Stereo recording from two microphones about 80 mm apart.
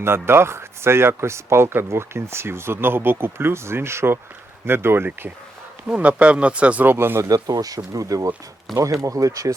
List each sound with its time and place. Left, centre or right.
0.0 s speech: right
5.9 s speech: centre
6.8 s speech: right
7.3 s speech: right